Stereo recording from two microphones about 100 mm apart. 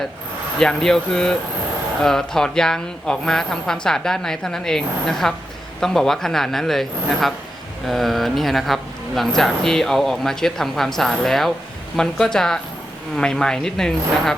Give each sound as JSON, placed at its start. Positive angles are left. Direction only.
{"t": 0.6, "sound": "speech", "side_deg": 5}